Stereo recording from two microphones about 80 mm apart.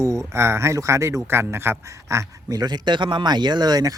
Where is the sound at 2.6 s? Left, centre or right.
Right.